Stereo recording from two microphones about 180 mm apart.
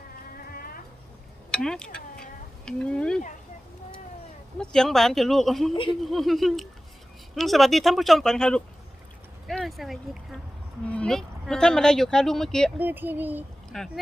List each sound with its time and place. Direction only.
0.4 s a sound: 55° left (ahead or behind)
1.5 s speech: 5° left (ahead or behind)
4.5 s speech: 5° left (ahead or behind)
12.8 s speech: 10° right (ahead or behind)
13.7 s speech: centre (ahead or behind)